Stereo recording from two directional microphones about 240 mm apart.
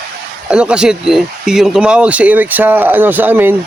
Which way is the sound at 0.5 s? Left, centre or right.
Centre.